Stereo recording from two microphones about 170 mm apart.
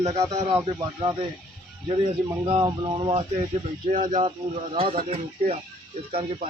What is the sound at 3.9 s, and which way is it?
Speech, 45° right (ahead or behind).